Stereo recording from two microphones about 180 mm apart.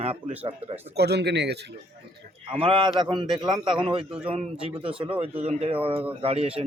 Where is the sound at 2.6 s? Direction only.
30° right (ahead or behind).